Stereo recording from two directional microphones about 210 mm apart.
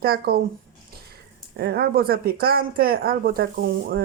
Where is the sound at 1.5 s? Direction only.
50° right (ahead or behind).